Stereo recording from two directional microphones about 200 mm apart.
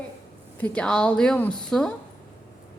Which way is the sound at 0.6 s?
5° left (ahead or behind).